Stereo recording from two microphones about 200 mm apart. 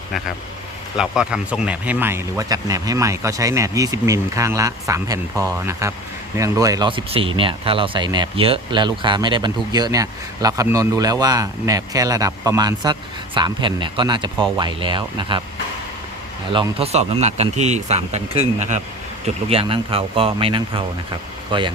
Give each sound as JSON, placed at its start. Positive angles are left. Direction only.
{"t": 0.9, "sound": "speech", "side_deg": -5}
{"t": 16.5, "sound": "speech", "side_deg": -25}